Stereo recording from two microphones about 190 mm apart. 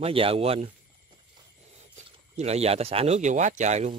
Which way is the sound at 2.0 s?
35° right (ahead or behind).